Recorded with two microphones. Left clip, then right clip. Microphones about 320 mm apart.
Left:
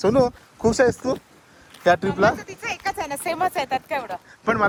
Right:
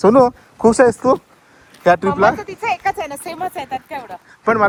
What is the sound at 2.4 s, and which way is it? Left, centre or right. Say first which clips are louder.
Speech: right 9 dB; centre.